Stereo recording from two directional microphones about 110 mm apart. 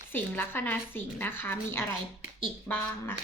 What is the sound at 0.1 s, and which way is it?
A woman's voice, 20° left (ahead or behind).